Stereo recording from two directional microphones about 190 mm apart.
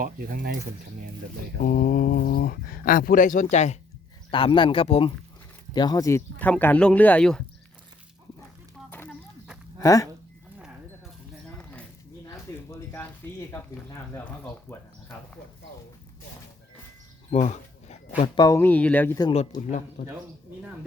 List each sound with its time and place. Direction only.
0.0 s speech: 50° right (ahead or behind)
1.6 s speech: 45° left (ahead or behind)
4.3 s speech: 25° left (ahead or behind); by 7.4 s 5° left (ahead or behind)
8.9 s a sound: 10° left (ahead or behind)
9.7 s speech: 15° left (ahead or behind)
12.7 s a sound: 10° left (ahead or behind)
13.5 s speech: 10° left (ahead or behind)
17.3 s a sound: 35° left (ahead or behind)
18.3 s speech: 15° left (ahead or behind)
19.2 s speech: 35° left (ahead or behind)